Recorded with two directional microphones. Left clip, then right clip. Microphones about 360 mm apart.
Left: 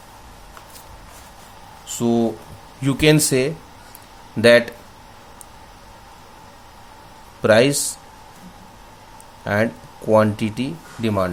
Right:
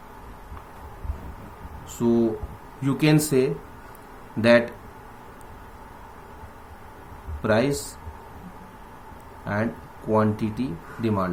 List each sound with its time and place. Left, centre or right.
2.0 s speech: left
7.4 s speech: left
9.4 s speech: left